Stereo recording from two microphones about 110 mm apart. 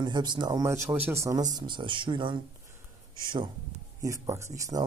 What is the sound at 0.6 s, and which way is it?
Speech, 25° right (ahead or behind).